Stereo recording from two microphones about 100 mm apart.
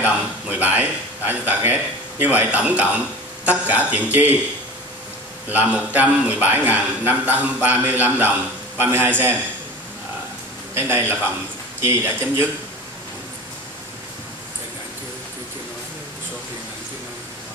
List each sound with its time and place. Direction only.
0.0 s a man's voice: 15° right (ahead or behind)
5.5 s a man's voice: 15° right (ahead or behind)
10.7 s speech: 25° right (ahead or behind)